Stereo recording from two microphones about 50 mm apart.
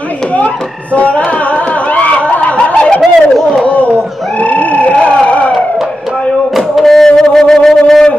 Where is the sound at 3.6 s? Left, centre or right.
Left.